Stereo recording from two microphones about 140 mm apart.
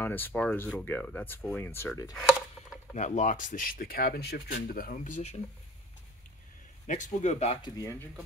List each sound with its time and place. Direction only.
0.0 s speech: 15° left (ahead or behind)
2.1 s a sound: centre (ahead or behind)
2.9 s speech: 60° left (ahead or behind); by 4.2 s 90° left
4.7 s speech: 75° left (ahead or behind); by 5.4 s 55° left (ahead or behind)
6.9 s speech: 60° left (ahead or behind)
7.6 s speech: 30° left (ahead or behind)